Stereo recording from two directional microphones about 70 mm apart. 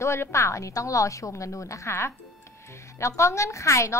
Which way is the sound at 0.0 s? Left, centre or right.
Left.